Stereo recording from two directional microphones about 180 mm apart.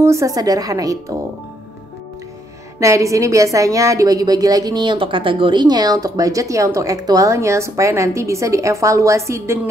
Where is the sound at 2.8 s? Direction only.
15° right (ahead or behind).